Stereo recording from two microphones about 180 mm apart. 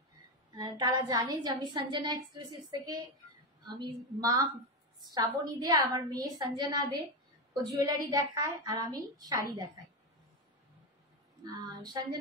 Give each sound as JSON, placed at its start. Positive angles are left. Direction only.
{"t": 0.5, "sound": "a woman's voice", "side_deg": -20}
{"t": 11.4, "sound": "a woman's voice", "side_deg": -20}